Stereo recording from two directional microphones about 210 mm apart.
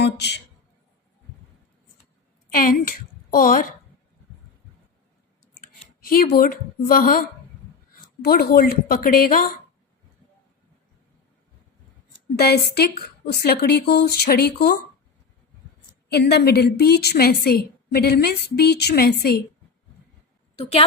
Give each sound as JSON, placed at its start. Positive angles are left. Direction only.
{"t": 0.0, "sound": "speech", "side_deg": 55}
{"t": 2.5, "sound": "a woman's voice", "side_deg": 40}
{"t": 5.5, "sound": "clicking", "side_deg": 45}
{"t": 6.3, "sound": "a woman's voice", "side_deg": 45}
{"t": 12.4, "sound": "a woman's voice", "side_deg": 50}
{"t": 16.0, "sound": "a woman's voice", "side_deg": 50}
{"t": 20.6, "sound": "a woman's voice", "side_deg": 30}